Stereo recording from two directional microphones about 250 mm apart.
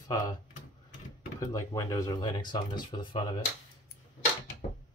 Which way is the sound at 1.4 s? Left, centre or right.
Centre.